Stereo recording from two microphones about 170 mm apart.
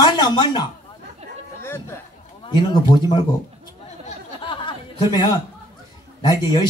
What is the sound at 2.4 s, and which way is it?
Speech, 25° left (ahead or behind).